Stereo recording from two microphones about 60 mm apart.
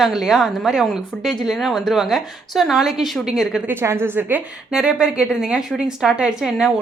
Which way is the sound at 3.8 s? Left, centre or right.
Right.